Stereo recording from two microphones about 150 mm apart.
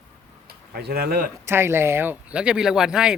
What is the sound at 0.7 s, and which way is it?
Speech, 90° right.